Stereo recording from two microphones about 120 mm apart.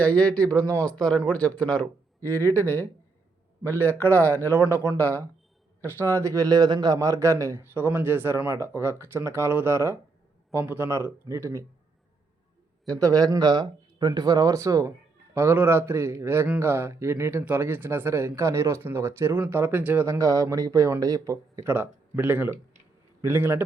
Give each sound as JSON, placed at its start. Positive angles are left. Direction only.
{"t": 0.0, "sound": "speech", "side_deg": 10}
{"t": 2.2, "sound": "speech", "side_deg": 20}
{"t": 4.5, "sound": "speech", "side_deg": -20}
{"t": 6.0, "sound": "speech", "side_deg": -25}
{"t": 13.0, "sound": "speech", "side_deg": -30}
{"t": 21.7, "sound": "speech", "side_deg": -15}